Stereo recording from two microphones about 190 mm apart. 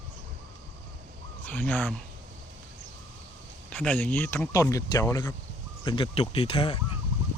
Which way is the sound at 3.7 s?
10° left (ahead or behind).